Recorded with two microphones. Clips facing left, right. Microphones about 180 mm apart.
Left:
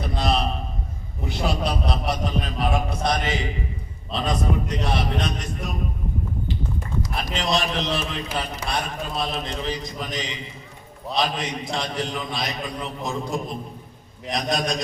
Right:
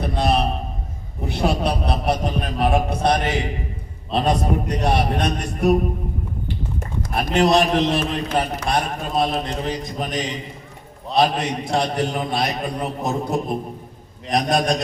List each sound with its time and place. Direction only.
0.0 s a sound: 60° right (ahead or behind)
1.3 s a man's voice: 60° right (ahead or behind)
6.7 s a man's voice: 55° right (ahead or behind)